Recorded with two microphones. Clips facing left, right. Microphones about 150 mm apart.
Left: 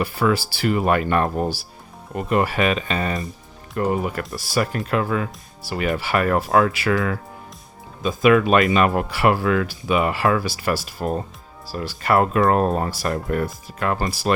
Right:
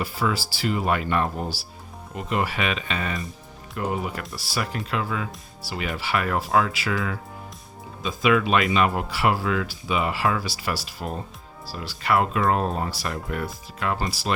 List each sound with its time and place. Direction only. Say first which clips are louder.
0.0 s speech: left 6 dB; 60° left (ahead or behind)